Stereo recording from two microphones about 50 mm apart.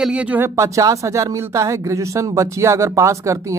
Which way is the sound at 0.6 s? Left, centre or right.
Right.